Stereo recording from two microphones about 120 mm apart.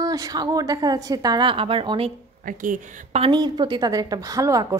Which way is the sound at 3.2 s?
40° right (ahead or behind).